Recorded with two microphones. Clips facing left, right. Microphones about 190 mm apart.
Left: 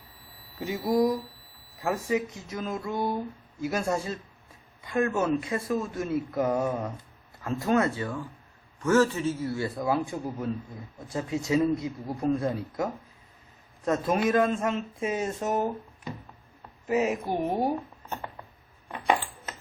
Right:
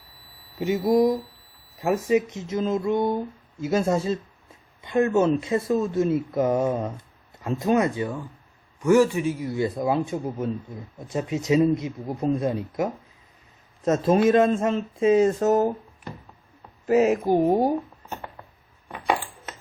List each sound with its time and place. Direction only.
0.6 s a man's voice: 20° right (ahead or behind); by 15.7 s 40° right (ahead or behind)
16.9 s speech: 90° right
17.3 s speech: 40° right (ahead or behind)